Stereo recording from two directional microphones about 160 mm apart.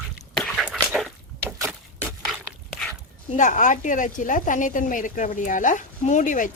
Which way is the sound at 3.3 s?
50° left (ahead or behind).